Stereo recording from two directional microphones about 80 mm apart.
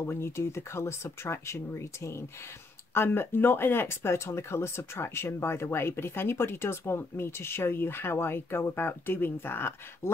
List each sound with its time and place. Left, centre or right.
0.0 s speech: left